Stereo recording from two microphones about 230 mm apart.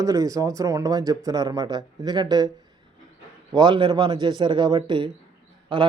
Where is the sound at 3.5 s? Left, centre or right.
Centre.